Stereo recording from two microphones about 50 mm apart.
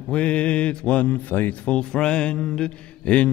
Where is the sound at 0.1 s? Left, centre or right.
Left.